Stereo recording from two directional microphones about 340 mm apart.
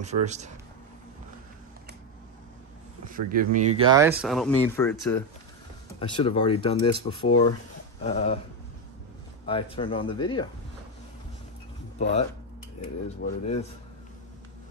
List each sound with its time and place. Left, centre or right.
0.0 s speech: centre
3.1 s speech: right
3.7 s speech: centre
7.2 s speech: left
8.0 s speech: centre
9.5 s speech: centre
12.0 s speech: centre